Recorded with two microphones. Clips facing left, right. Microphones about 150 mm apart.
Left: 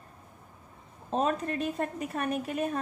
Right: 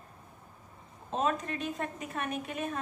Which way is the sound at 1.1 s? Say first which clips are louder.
Left 3 dB; 40° left (ahead or behind).